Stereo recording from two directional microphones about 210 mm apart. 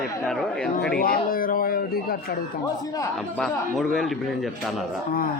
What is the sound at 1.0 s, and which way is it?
Speech, 40° left (ahead or behind).